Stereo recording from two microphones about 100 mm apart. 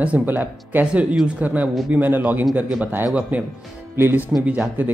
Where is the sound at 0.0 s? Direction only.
15° right (ahead or behind).